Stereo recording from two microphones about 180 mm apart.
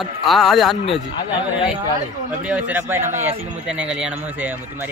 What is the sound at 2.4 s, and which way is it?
Speech, 5° right (ahead or behind).